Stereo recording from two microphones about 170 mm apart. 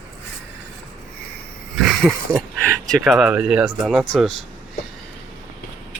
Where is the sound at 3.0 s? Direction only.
5° right (ahead or behind).